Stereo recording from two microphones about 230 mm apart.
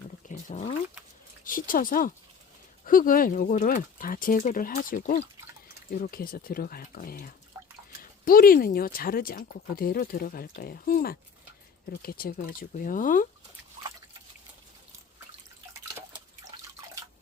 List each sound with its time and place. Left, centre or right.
0.3 s a sound: left
1.5 s speech: left
7.6 s drip: centre
8.2 s speech: left